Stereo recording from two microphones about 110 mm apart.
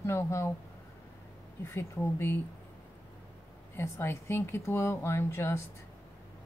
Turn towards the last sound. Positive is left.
turn(degrees=25)  # may be behind; listen again after turning